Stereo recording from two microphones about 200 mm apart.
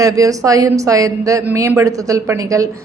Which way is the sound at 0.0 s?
15° right (ahead or behind).